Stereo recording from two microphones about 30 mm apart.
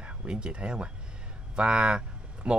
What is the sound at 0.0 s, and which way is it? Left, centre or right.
Speech, right.